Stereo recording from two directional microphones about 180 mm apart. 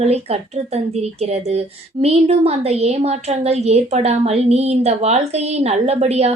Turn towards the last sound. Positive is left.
turn(degrees=-35)  # may be behind; listen again after turning